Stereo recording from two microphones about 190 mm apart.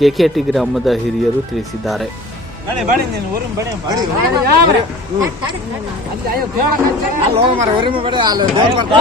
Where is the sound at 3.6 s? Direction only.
20° right (ahead or behind).